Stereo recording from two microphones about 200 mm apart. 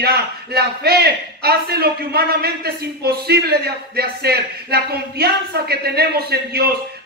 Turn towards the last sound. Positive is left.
turn(degrees=-50)  # may be behind; listen again after turning